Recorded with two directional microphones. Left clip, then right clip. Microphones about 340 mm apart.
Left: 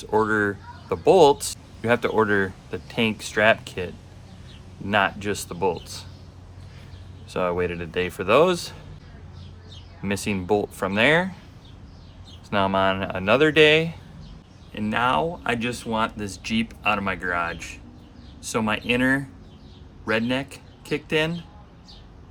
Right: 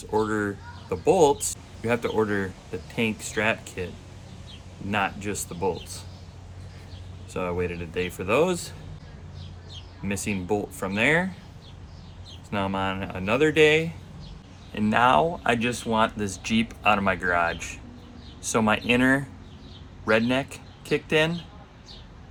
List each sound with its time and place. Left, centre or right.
0.0 s speech: centre
4.9 s speech: centre
7.3 s speech: centre
10.0 s speech: centre
12.5 s speech: centre
14.7 s speech: centre